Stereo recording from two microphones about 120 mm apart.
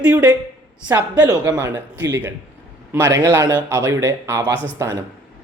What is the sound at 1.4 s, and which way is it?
Speech, 25° right (ahead or behind).